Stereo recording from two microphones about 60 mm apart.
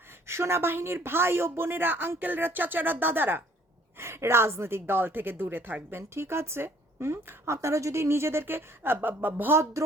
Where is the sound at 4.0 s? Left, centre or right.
Right.